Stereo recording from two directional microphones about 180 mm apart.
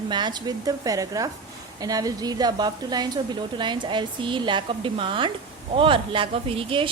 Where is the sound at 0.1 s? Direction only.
25° right (ahead or behind).